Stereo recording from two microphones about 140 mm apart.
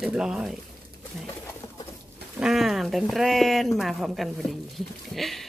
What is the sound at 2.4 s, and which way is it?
Speech, centre (ahead or behind).